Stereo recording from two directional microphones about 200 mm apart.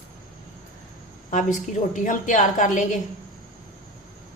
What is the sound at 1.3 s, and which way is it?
A woman's voice, 40° left (ahead or behind).